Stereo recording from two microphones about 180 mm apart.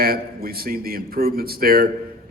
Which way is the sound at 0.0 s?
55° right (ahead or behind).